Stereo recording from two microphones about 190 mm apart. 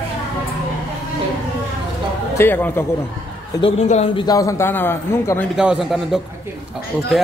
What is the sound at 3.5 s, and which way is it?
A man's voice, 30° left (ahead or behind).